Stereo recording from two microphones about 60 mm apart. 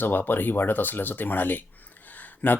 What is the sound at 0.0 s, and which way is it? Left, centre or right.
Speech, left.